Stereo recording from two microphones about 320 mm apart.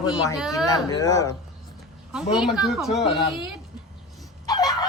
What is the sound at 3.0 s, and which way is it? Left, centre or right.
Speech, centre.